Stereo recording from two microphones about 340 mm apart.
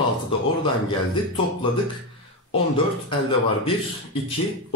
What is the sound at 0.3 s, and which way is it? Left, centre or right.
Speech, centre.